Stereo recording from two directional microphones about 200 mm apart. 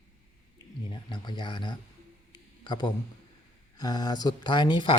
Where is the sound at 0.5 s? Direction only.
20° left (ahead or behind).